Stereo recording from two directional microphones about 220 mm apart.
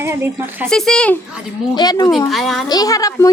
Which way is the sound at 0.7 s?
Centre (ahead or behind).